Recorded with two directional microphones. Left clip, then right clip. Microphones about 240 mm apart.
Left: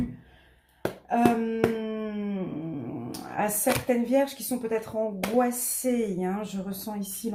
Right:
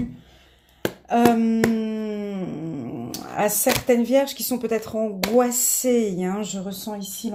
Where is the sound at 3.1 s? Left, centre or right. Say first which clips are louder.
Right 6 dB; right.